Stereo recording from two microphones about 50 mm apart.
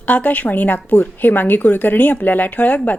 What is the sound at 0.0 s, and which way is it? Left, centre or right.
A woman's voice, left.